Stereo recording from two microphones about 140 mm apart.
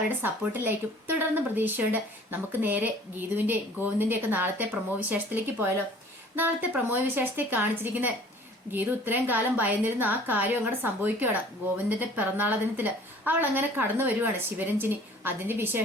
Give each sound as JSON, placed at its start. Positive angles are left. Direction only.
{"t": 0.2, "sound": "speech", "side_deg": -15}